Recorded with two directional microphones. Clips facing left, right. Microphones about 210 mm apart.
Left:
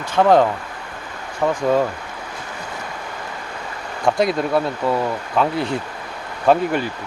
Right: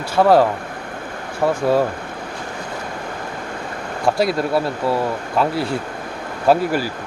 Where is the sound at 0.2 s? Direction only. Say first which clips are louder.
Right 1 dB; 5° right (ahead or behind).